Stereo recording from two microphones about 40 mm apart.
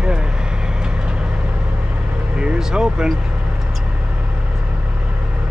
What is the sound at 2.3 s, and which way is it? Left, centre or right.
Vehicle, right.